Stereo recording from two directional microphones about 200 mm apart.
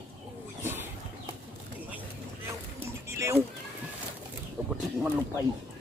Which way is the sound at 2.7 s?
15° right (ahead or behind).